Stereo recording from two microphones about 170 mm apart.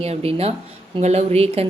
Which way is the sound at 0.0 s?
35° right (ahead or behind).